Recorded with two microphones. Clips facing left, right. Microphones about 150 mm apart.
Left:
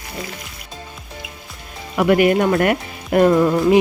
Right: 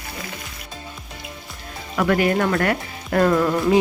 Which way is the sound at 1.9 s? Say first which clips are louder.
Left 4 dB; 15° left (ahead or behind).